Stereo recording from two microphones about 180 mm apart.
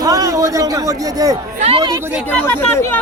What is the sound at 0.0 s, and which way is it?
A man's voice, 20° right (ahead or behind).